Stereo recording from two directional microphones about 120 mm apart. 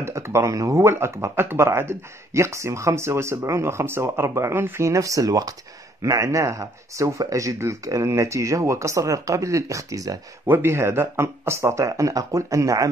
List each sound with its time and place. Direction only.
0.0 s speech: 25° right (ahead or behind)